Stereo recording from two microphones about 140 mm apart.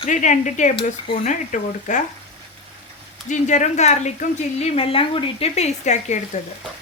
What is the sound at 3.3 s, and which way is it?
A woman's voice, 60° left (ahead or behind).